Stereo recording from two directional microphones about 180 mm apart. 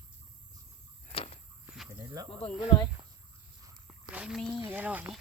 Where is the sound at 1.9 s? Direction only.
20° right (ahead or behind).